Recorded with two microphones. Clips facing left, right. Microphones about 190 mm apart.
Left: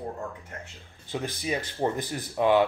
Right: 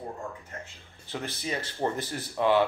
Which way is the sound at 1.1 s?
15° left (ahead or behind).